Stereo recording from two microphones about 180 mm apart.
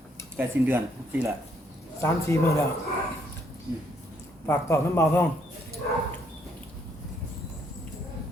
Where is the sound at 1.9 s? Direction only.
15° left (ahead or behind).